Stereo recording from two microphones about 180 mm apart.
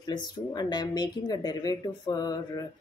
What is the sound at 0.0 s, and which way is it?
Speech, 25° left (ahead or behind).